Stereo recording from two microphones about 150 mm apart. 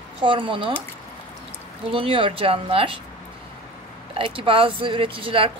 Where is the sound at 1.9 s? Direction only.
35° right (ahead or behind).